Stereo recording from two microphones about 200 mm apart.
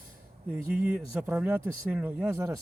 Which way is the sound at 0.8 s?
5° right (ahead or behind).